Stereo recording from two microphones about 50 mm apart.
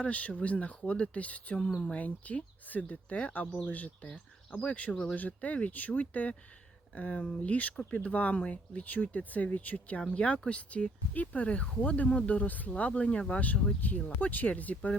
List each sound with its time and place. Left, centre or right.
0.0 s speech: left
1.5 s speech: centre